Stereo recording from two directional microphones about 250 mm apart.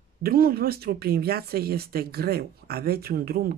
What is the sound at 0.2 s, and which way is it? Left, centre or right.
Speech, right.